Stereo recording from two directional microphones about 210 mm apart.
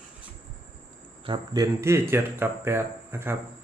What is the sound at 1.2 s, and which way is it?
Speech, 20° right (ahead or behind).